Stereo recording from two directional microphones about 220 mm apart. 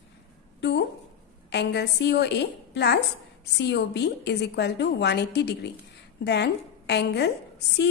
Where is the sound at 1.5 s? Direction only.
50° left (ahead or behind).